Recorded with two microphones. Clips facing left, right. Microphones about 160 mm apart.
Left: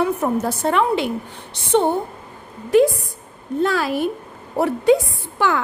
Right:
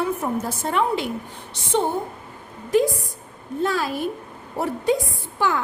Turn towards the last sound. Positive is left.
turn(degrees=75)  # may be behind; listen again after turning